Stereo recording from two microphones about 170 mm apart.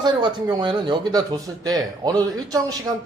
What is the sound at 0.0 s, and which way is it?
A man's voice, 25° right (ahead or behind).